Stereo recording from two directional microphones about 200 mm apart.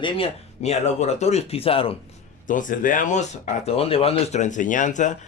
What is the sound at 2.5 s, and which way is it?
Speech, 40° left (ahead or behind).